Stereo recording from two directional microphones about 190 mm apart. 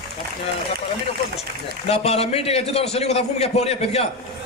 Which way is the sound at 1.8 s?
30° left (ahead or behind).